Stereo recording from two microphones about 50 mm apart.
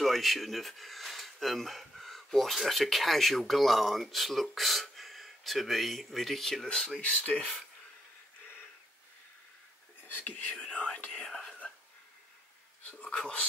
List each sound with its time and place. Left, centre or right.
0.0 s speech: centre
7.0 s speech: left
10.0 s speech: left
11.1 s whispering: centre
12.9 s a sound: centre
13.2 s speech: centre